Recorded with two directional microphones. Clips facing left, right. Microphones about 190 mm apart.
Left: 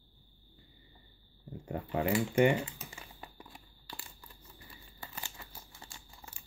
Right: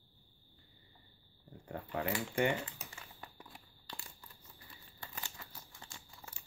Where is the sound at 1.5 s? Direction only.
15° left (ahead or behind).